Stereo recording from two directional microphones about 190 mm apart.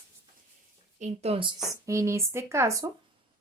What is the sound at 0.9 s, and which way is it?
Speech, 35° right (ahead or behind).